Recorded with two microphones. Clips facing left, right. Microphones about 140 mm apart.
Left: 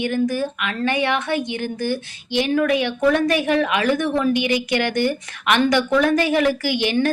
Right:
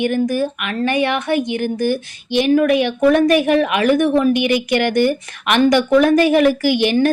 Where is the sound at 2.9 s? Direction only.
15° right (ahead or behind).